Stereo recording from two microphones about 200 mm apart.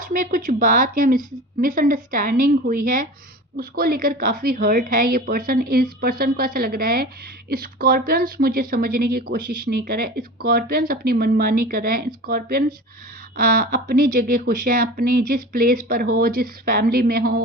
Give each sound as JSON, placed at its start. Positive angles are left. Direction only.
{"t": 0.0, "sound": "speech", "side_deg": -45}